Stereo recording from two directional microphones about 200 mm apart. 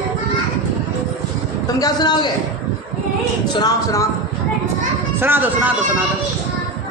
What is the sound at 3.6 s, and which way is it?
Speech, 15° left (ahead or behind).